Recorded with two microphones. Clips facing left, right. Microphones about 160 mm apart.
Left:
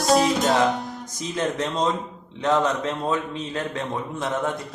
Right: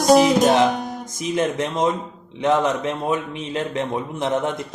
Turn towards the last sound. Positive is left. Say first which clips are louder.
# right 4 dB
turn(degrees=-20)  # may be behind; listen again after turning